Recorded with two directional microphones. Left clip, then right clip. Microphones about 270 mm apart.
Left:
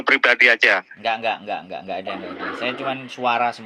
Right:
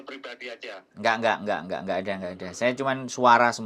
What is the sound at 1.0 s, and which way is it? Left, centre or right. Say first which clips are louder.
A man's voice: left 1 dB; right.